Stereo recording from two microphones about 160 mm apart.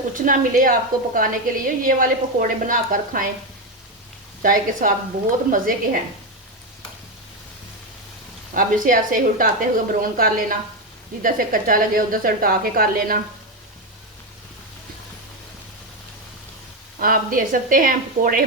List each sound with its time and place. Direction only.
0.3 s a woman's voice: 60° right (ahead or behind)
4.8 s a woman's voice: 60° right (ahead or behind)
8.5 s a woman's voice: 55° right (ahead or behind)
17.0 s a woman's voice: 60° right (ahead or behind)